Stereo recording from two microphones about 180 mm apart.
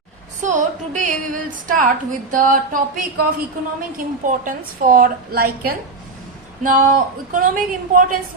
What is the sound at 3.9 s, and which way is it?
A woman's voice, 50° right (ahead or behind).